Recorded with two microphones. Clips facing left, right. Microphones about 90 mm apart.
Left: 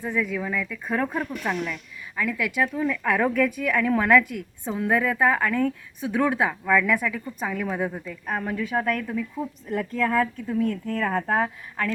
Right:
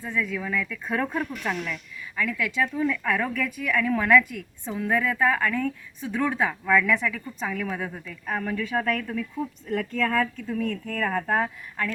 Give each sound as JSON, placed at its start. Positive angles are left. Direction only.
{"t": 0.0, "sound": "speech", "side_deg": 15}
{"t": 3.2, "sound": "speech", "side_deg": 20}